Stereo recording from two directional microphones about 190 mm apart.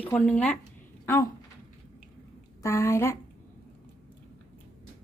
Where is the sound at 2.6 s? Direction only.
15° left (ahead or behind).